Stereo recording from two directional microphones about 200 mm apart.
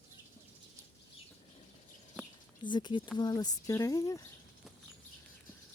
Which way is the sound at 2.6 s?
25° left (ahead or behind).